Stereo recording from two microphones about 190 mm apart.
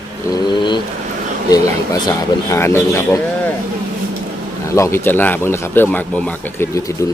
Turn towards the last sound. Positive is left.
turn(degrees=10)  # may be behind; listen again after turning